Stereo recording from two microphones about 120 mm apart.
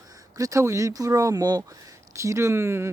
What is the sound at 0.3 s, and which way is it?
Speech, 25° right (ahead or behind).